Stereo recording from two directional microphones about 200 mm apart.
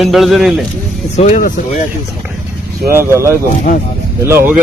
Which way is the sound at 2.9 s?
15° right (ahead or behind).